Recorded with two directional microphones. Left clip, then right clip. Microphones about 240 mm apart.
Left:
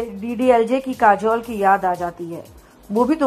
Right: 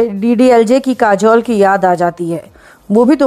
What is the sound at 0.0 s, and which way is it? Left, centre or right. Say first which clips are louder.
A woman's voice: right 10 dB; right.